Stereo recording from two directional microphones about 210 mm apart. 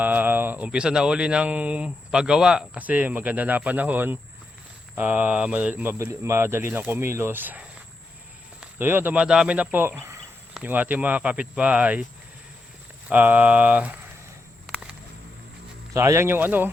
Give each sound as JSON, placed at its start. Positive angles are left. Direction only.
{"t": 0.0, "sound": "speech", "side_deg": -10}
{"t": 8.6, "sound": "speech", "side_deg": -10}
{"t": 13.1, "sound": "speech", "side_deg": -10}
{"t": 15.9, "sound": "speech", "side_deg": -15}